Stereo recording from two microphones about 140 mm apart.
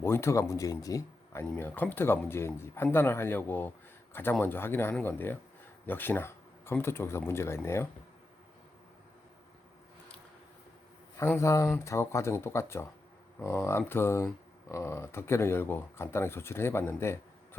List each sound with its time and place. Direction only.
0.0 s speech: 20° left (ahead or behind)
11.2 s speech: 20° left (ahead or behind)